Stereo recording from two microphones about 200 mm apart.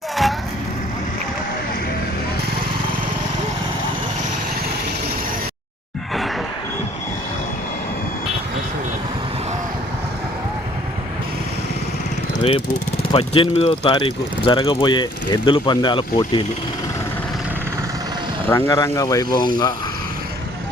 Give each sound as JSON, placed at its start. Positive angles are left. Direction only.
{"t": 12.4, "sound": "vehicle", "side_deg": 25}
{"t": 13.1, "sound": "speech", "side_deg": 25}
{"t": 18.4, "sound": "speech", "side_deg": 10}